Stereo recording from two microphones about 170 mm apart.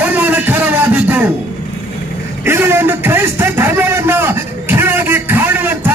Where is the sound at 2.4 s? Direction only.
15° right (ahead or behind).